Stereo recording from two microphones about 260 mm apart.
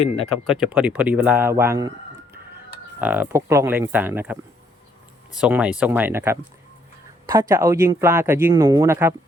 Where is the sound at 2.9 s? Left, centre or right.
Centre.